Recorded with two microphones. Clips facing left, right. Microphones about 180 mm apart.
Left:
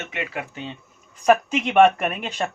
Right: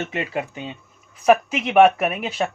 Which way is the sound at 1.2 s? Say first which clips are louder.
Right 1 dB; 5° right (ahead or behind).